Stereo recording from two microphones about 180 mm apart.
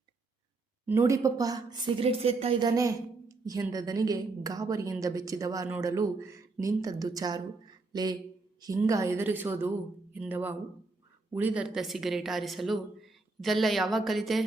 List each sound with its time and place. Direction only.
0.9 s a woman's voice: 15° right (ahead or behind); by 14.4 s centre (ahead or behind)